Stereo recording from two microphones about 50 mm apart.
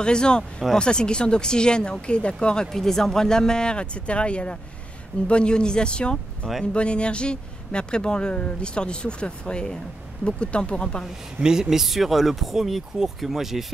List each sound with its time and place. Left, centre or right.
0.0 s speech: centre
11.3 s speech: centre